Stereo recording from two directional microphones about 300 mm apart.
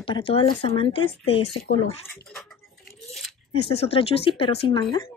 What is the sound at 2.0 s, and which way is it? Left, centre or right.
Speech, centre.